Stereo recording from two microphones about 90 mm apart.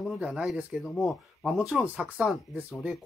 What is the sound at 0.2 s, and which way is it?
Speech, 15° right (ahead or behind).